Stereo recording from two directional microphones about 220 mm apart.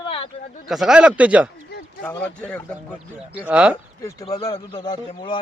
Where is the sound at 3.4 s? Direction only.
5° right (ahead or behind).